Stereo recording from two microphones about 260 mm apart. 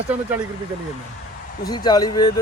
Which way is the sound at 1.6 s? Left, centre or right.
Centre.